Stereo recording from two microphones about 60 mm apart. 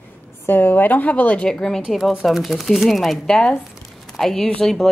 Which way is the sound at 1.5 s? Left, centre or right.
Centre.